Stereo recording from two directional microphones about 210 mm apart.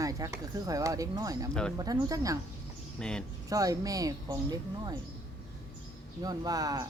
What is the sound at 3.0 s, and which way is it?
Speech, 5° left (ahead or behind).